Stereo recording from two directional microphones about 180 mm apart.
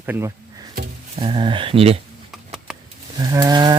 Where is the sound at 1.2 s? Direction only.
30° right (ahead or behind).